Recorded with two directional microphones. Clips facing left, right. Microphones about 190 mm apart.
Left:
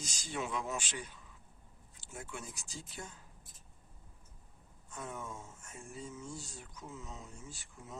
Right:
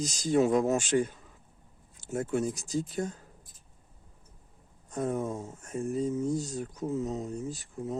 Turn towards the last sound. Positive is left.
turn(degrees=-35)  # may be behind; listen again after turning